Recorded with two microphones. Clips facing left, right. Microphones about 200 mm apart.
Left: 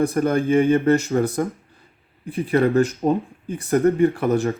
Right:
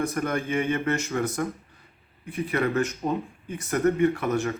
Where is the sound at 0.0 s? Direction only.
30° left (ahead or behind).